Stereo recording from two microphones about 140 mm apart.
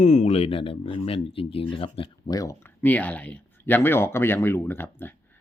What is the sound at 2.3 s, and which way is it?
Speech, 25° left (ahead or behind).